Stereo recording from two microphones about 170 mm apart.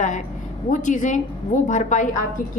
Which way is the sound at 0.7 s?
45° left (ahead or behind).